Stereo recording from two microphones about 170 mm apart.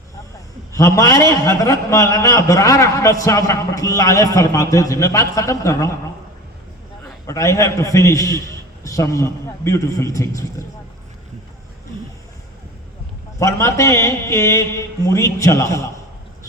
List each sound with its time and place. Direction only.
0.7 s a man's voice: 20° left (ahead or behind)
7.3 s a man's voice: 15° left (ahead or behind)
13.4 s a man's voice: 15° left (ahead or behind)